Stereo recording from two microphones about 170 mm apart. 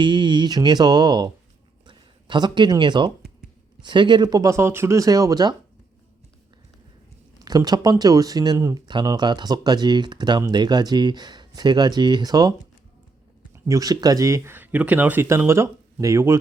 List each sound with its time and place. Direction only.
0.0 s speech: 25° right (ahead or behind)
7.4 s speech: 20° right (ahead or behind)